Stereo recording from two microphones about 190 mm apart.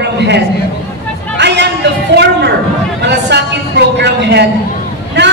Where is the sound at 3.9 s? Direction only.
65° right (ahead or behind).